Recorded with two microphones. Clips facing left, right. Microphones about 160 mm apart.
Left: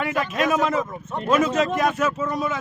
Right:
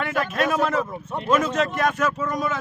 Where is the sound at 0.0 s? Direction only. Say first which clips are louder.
Left 1 dB; 10° left (ahead or behind).